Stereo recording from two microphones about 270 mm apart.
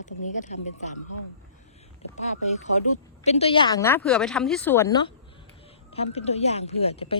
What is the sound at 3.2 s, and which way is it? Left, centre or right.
A woman's voice, left.